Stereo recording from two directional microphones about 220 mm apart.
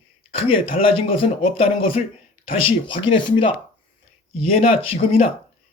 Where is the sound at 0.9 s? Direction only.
25° left (ahead or behind).